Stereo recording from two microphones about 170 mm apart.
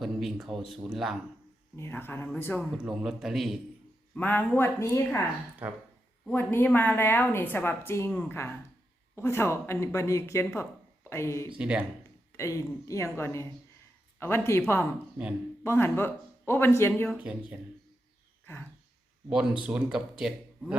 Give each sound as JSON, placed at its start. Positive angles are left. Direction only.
{"t": 0.0, "sound": "speech", "side_deg": 0}
{"t": 1.7, "sound": "a woman's voice", "side_deg": 15}
{"t": 2.7, "sound": "speech", "side_deg": -5}
{"t": 4.1, "sound": "a woman's voice", "side_deg": 10}
{"t": 5.6, "sound": "speech", "side_deg": -10}
{"t": 6.2, "sound": "a woman's voice", "side_deg": 10}
{"t": 11.5, "sound": "speech", "side_deg": -5}
{"t": 12.4, "sound": "a woman's voice", "side_deg": 20}
{"t": 15.6, "sound": "a woman's voice", "side_deg": 15}
{"t": 17.1, "sound": "speech", "side_deg": -5}
{"t": 18.5, "sound": "a sound", "side_deg": 15}
{"t": 19.3, "sound": "speech", "side_deg": -5}